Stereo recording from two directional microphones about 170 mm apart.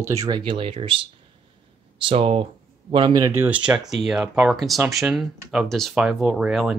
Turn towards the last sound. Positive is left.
turn(degrees=0)  # may be behind; listen again after turning